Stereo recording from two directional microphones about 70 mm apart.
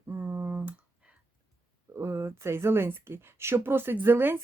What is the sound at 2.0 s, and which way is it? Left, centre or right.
Speech, right.